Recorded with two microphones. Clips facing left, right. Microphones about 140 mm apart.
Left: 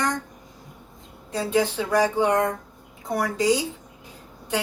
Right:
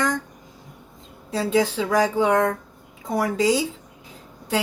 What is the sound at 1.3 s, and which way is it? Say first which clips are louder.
Speech: right 2 dB; 90° right.